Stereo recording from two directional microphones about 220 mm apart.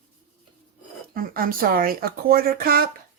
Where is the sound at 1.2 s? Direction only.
40° right (ahead or behind).